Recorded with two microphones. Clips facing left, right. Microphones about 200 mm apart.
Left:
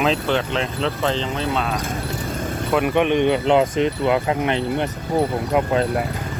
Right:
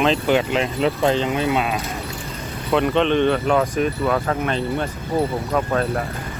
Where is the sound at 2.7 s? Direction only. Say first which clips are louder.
Right 1 dB; 10° left (ahead or behind).